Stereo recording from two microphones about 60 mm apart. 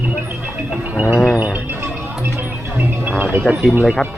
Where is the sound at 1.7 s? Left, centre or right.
Right.